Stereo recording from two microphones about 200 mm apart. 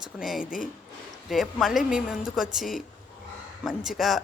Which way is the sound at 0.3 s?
40° left (ahead or behind).